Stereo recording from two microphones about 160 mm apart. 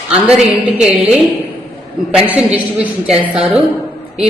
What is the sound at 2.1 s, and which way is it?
Speech, 10° right (ahead or behind).